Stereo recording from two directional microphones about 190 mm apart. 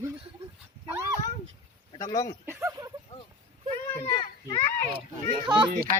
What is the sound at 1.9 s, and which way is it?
Speech, 20° left (ahead or behind).